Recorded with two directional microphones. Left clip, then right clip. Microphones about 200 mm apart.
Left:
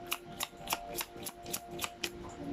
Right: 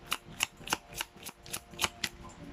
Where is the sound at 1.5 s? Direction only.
Centre (ahead or behind).